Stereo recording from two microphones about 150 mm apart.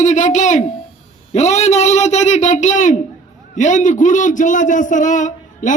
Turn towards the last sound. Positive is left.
turn(degrees=60)  # may be behind; listen again after turning